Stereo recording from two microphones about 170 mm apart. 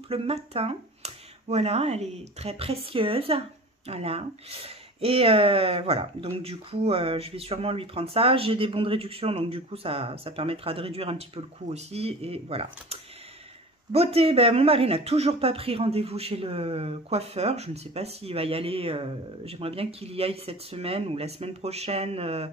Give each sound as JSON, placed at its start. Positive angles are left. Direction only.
{"t": 0.1, "sound": "speech", "side_deg": -35}